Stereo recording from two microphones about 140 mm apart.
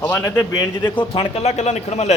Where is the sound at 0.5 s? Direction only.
30° left (ahead or behind).